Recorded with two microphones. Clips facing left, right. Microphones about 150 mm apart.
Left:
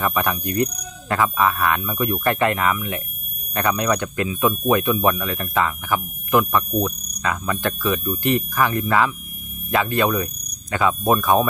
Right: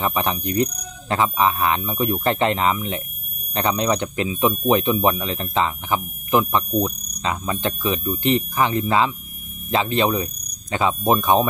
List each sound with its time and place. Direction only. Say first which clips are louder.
0.0 s speech: even; 20° right (ahead or behind)